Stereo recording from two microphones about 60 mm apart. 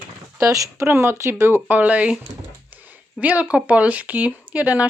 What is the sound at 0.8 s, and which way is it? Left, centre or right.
Speech, right.